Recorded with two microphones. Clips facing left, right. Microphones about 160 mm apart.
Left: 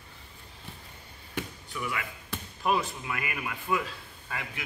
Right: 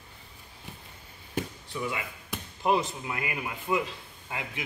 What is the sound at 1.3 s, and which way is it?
Speech, 30° right (ahead or behind).